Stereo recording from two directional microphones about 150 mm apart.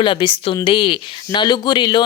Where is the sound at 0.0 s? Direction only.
35° left (ahead or behind).